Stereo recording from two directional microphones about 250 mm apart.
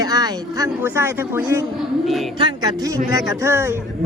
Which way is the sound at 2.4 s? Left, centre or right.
Centre.